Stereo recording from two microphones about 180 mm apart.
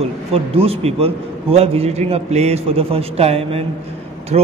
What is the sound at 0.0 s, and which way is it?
A man's voice, 35° right (ahead or behind).